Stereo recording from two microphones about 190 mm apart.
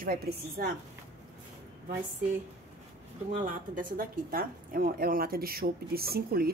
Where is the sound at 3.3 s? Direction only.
45° right (ahead or behind).